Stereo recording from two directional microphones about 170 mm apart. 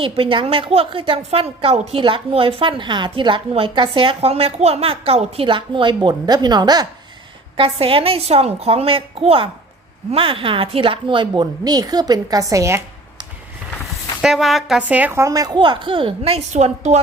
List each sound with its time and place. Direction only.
0.0 s a woman's voice: 30° right (ahead or behind)
14.2 s a woman's voice: centre (ahead or behind); by 17.0 s 40° right (ahead or behind)